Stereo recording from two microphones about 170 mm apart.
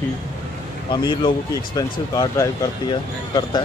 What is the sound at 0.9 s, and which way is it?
Speech, 25° left (ahead or behind).